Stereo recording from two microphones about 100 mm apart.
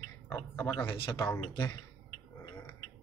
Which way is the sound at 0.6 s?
25° left (ahead or behind).